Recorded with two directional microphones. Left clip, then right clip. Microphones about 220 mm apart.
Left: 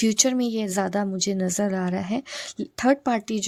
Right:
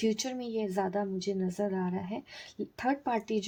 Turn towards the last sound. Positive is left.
turn(degrees=45)  # may be behind; listen again after turning